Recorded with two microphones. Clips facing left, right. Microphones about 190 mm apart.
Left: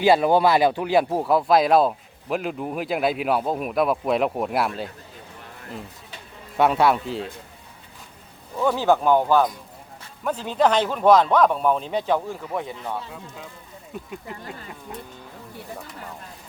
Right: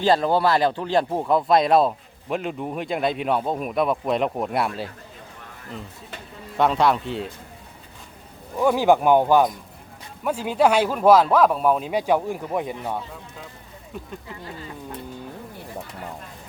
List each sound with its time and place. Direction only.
0.0 s speech: 10° left (ahead or behind)
6.6 s speech: 5° left (ahead or behind)
8.5 s speech: 15° right (ahead or behind)